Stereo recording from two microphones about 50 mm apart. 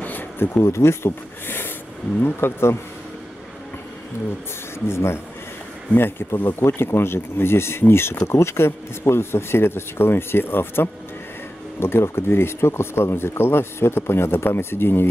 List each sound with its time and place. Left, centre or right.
0.0 s a sound: left
0.6 s speech: left
2.2 s speech: left
4.7 s speech: left
5.9 s speech: left